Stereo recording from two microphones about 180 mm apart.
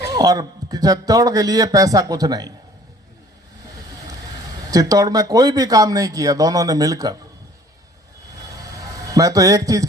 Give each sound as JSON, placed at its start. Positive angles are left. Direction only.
{"t": 0.1, "sound": "speech", "side_deg": -20}
{"t": 4.7, "sound": "speech", "side_deg": -20}
{"t": 9.1, "sound": "speech", "side_deg": -20}